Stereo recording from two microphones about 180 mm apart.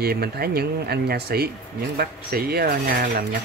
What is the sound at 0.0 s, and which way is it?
Cutlery, 60° right (ahead or behind).